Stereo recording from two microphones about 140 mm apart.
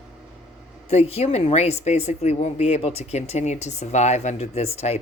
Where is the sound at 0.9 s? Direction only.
50° left (ahead or behind).